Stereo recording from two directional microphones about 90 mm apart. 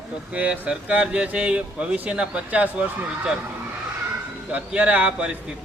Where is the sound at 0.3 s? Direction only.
15° right (ahead or behind).